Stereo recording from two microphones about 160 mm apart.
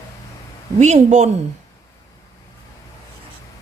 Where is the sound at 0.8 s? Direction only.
45° right (ahead or behind).